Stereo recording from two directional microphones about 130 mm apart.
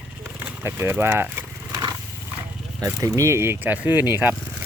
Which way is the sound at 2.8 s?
25° right (ahead or behind).